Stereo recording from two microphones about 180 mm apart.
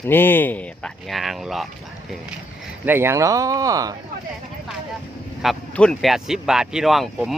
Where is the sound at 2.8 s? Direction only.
10° right (ahead or behind).